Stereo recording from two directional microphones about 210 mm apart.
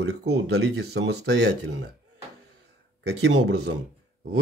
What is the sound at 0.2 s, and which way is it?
Speech, 55° right (ahead or behind).